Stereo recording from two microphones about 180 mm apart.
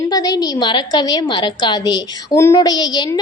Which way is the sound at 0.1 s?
20° left (ahead or behind).